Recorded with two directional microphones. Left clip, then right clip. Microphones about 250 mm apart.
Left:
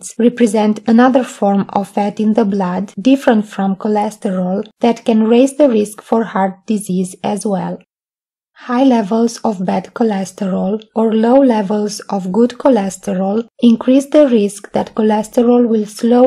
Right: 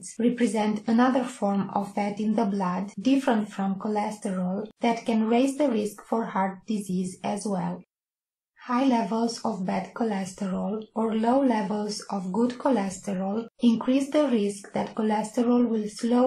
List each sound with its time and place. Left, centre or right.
0.2 s speech: left